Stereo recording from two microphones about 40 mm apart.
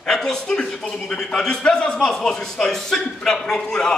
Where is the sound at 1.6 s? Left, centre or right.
Left.